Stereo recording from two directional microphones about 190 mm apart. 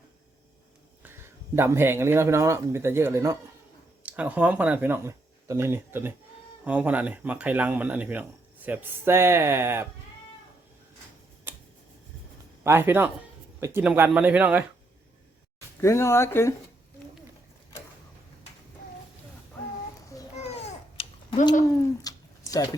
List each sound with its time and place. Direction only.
1.0 s speech: 10° right (ahead or behind)
12.6 s speech: 10° right (ahead or behind)
15.8 s speech: 15° left (ahead or behind)
20.3 s babbling: 35° left (ahead or behind)
22.1 s a sound: 20° left (ahead or behind)